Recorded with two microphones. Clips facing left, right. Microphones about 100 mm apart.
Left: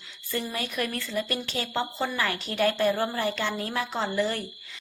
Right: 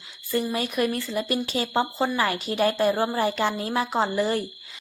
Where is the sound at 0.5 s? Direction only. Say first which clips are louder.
Right 6 dB; 25° right (ahead or behind).